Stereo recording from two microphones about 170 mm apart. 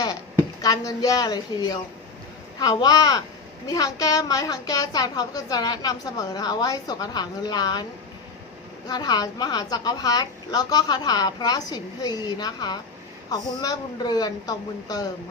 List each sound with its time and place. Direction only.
0.6 s a woman's voice: 20° left (ahead or behind)
8.9 s a woman's voice: 25° left (ahead or behind)